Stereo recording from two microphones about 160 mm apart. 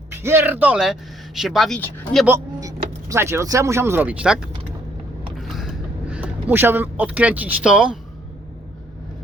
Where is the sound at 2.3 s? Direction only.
20° right (ahead or behind).